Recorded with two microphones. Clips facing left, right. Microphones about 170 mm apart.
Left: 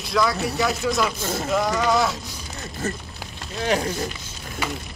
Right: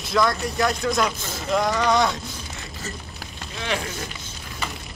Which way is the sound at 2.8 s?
55° left (ahead or behind).